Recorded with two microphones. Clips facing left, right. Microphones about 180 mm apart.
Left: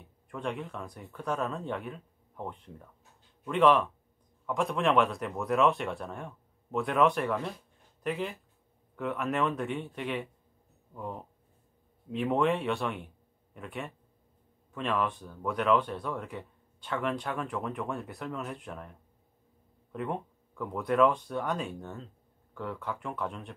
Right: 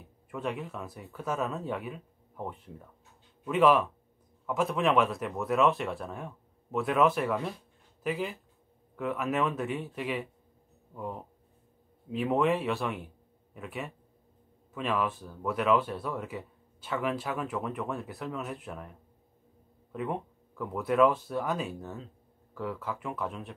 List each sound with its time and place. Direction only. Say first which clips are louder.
0.0 s a man's voice: right 1 dB; 5° right (ahead or behind)